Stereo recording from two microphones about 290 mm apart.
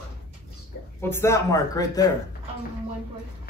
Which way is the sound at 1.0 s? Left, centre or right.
Centre.